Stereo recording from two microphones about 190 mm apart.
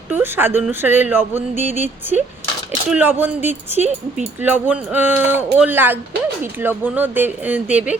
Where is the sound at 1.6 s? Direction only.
40° left (ahead or behind).